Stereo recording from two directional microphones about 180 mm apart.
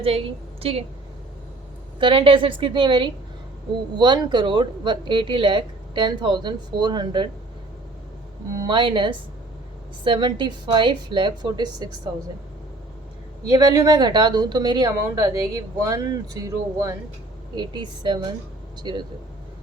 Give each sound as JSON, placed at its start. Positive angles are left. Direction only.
{"t": 0.6, "sound": "a woman's voice", "side_deg": -30}
{"t": 2.0, "sound": "speech", "side_deg": -30}
{"t": 8.5, "sound": "speech", "side_deg": -25}
{"t": 13.5, "sound": "speech", "side_deg": -20}